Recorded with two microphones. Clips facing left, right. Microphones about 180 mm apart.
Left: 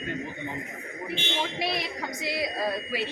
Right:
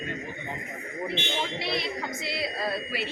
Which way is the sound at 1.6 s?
15° left (ahead or behind).